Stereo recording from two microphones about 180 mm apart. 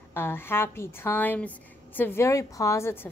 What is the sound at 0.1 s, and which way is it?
A woman's voice, 10° left (ahead or behind).